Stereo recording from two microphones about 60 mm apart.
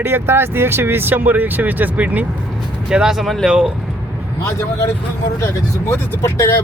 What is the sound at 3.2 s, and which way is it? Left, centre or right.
Speech, centre.